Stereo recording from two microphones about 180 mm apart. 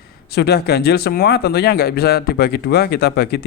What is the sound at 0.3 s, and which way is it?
Speech, 65° left (ahead or behind).